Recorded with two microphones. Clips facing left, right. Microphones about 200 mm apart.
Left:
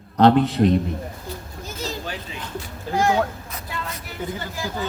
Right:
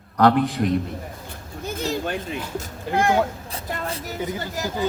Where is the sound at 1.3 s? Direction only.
60° right (ahead or behind).